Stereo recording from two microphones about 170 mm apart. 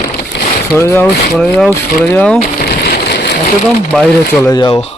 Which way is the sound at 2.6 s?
65° left (ahead or behind).